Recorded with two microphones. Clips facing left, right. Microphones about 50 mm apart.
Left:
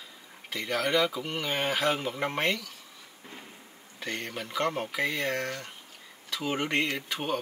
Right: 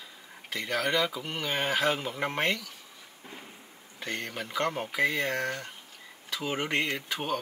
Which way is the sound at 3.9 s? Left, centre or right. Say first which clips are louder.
Even; centre.